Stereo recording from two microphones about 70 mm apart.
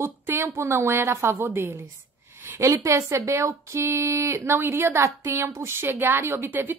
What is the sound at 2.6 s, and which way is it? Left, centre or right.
Speech, right.